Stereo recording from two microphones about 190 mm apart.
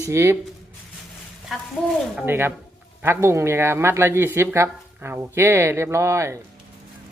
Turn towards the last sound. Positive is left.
turn(degrees=-15)  # may be behind; listen again after turning